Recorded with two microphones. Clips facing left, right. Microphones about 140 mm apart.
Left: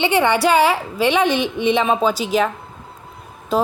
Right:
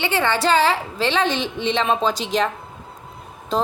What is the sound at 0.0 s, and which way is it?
A woman's voice, 15° left (ahead or behind).